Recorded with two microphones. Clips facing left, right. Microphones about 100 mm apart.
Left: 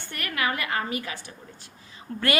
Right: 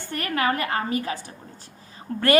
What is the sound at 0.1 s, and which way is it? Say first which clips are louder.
A woman's voice: right 5 dB; 35° right (ahead or behind).